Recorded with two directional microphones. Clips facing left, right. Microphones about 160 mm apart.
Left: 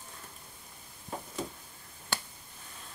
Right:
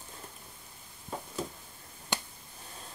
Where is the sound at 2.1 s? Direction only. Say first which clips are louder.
Right 2 dB; 15° right (ahead or behind).